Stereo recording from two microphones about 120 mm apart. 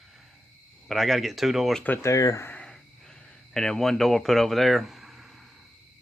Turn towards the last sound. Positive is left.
turn(degrees=0)  # may be behind; listen again after turning